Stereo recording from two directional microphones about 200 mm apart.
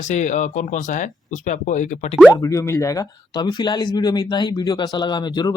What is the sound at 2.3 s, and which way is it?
Speech, 15° left (ahead or behind).